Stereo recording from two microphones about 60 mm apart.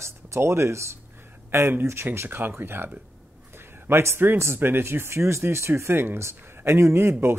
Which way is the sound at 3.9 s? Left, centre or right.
Right.